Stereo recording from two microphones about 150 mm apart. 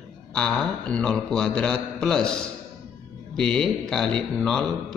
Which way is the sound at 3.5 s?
5° left (ahead or behind).